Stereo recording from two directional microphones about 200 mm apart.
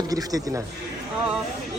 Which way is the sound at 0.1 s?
20° right (ahead or behind).